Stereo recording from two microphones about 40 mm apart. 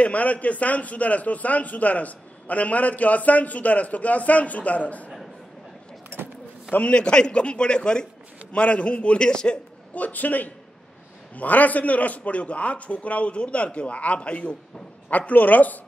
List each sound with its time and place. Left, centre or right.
0.0 s a man's voice: left
6.9 s a man's voice: left
9.3 s a man's voice: left
9.9 s a man's voice: left
15.0 s speech: left